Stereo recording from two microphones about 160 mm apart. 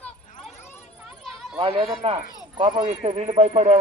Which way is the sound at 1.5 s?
35° right (ahead or behind).